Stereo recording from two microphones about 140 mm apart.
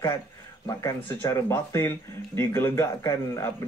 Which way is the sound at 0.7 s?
20° left (ahead or behind).